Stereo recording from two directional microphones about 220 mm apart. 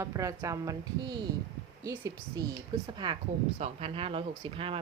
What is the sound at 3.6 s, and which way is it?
A woman's voice, 30° right (ahead or behind).